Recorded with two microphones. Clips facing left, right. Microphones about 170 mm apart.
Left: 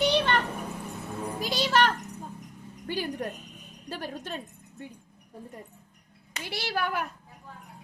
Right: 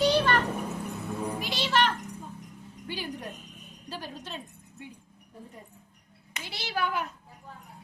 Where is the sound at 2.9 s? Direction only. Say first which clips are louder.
Left 5 dB; 50° left (ahead or behind).